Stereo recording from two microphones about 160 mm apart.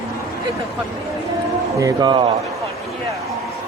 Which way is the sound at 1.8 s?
25° right (ahead or behind).